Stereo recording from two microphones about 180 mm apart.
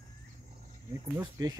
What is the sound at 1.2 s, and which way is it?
Speech, 20° right (ahead or behind).